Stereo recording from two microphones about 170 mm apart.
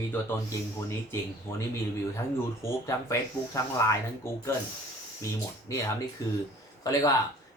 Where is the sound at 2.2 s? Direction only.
15° left (ahead or behind).